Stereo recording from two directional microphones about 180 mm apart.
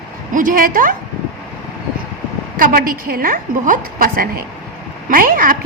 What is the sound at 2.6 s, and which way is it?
A woman's voice, 50° right (ahead or behind).